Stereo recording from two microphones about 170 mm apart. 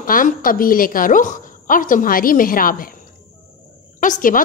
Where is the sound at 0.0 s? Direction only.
55° left (ahead or behind).